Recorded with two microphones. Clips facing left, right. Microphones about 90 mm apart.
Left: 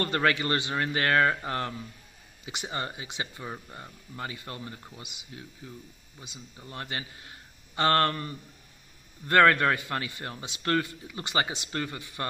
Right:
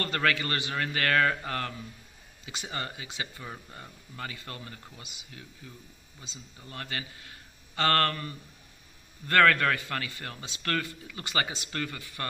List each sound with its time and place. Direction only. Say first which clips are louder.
0.0 s a man's voice: left 2 dB; 25° left (ahead or behind)